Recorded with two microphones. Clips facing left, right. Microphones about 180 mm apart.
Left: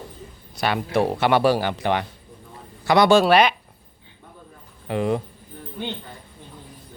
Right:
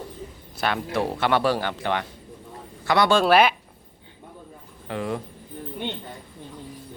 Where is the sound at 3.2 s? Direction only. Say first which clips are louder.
Left 1 dB; 5° right (ahead or behind).